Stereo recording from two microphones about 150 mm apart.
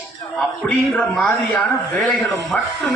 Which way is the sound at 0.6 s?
5° left (ahead or behind).